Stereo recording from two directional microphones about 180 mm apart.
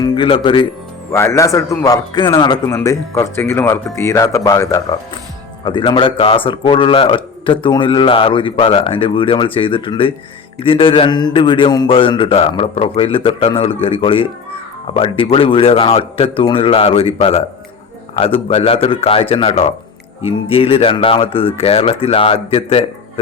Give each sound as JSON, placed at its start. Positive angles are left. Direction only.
{"t": 0.0, "sound": "music", "side_deg": 25}
{"t": 0.4, "sound": "a man's voice", "side_deg": 25}
{"t": 1.1, "sound": "a man's voice", "side_deg": 15}